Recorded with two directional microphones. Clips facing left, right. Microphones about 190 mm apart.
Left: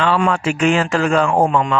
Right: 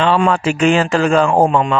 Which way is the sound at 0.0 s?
25° right (ahead or behind).